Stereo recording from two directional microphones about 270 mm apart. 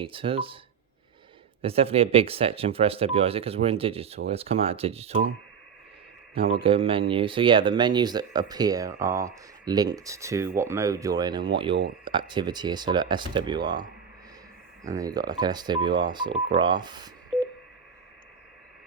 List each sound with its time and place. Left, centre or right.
0.0 s speech: centre
1.6 s speech: right
6.3 s speech: centre
14.8 s speech: centre